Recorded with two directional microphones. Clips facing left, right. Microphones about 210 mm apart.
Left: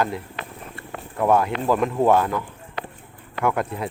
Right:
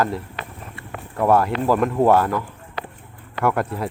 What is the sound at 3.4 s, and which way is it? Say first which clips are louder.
Speech: right 2 dB; centre (ahead or behind).